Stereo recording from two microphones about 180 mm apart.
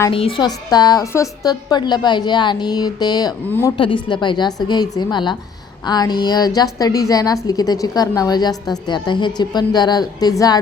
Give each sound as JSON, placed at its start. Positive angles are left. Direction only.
{"t": 0.1, "sound": "a woman's voice", "side_deg": 30}